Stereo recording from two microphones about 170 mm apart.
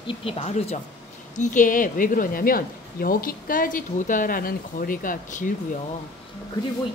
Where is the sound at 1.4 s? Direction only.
50° left (ahead or behind).